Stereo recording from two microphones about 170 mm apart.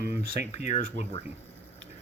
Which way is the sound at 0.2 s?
75° right (ahead or behind).